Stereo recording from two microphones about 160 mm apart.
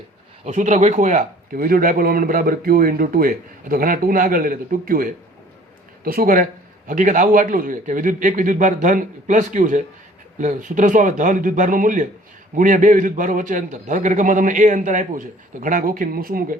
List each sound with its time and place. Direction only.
0.4 s a man's voice: 50° right (ahead or behind); by 16.6 s 65° right (ahead or behind)